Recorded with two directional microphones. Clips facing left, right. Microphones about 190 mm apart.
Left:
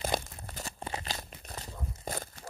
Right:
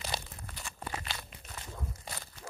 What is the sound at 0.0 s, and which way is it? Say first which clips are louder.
Crumpling: left 7 dB; 50° left (ahead or behind).